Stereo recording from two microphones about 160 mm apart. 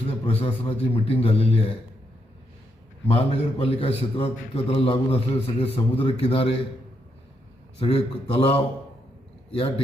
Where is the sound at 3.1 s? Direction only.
40° left (ahead or behind).